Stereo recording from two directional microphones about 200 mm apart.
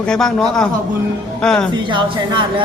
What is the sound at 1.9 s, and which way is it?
Speech, 25° right (ahead or behind).